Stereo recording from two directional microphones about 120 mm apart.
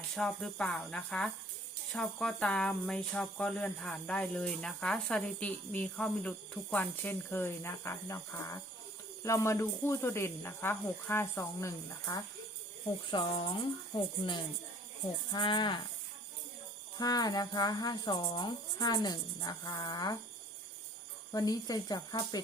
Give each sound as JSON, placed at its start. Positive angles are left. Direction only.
{"t": 0.2, "sound": "speech", "side_deg": 5}
{"t": 13.1, "sound": "speech", "side_deg": 45}
{"t": 17.0, "sound": "speech", "side_deg": 30}
{"t": 21.3, "sound": "speech", "side_deg": 30}